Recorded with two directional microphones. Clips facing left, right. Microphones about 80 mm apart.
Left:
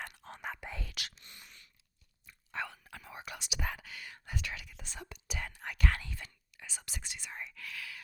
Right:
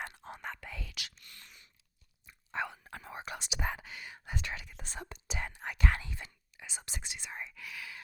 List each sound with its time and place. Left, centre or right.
0.0 s whispering: right
0.7 s whispering: left
1.2 s a sound: left
2.2 s chewing: right
2.8 s whispering: right